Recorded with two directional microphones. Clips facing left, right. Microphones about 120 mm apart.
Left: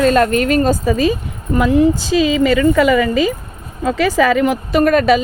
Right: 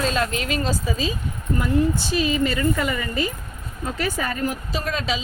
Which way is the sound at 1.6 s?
90° left.